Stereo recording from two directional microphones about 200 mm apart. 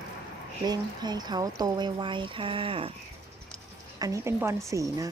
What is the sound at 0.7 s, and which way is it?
Speech, 20° right (ahead or behind).